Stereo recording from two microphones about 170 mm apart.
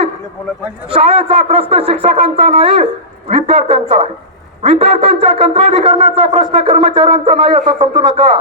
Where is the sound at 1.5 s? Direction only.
35° right (ahead or behind).